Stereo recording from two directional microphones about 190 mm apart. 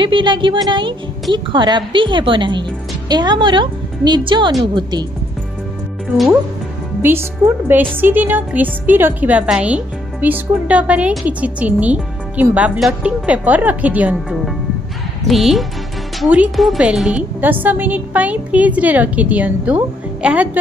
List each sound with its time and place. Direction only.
0.0 s a woman's voice: 25° right (ahead or behind)
7.0 s a woman's voice: 10° right (ahead or behind)